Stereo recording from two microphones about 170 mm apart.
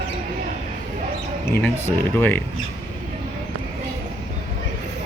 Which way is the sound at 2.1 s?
10° left (ahead or behind).